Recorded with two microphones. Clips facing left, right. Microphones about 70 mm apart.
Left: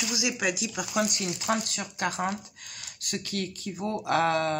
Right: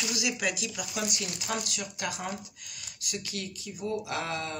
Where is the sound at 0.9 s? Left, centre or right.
Left.